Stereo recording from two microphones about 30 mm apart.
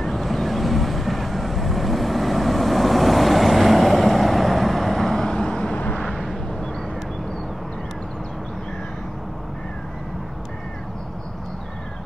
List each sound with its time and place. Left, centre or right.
0.0 s vehicle: centre
5.3 s vehicle: left
6.1 s vehicle: centre